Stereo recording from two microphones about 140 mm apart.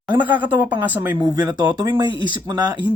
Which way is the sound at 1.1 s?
25° right (ahead or behind).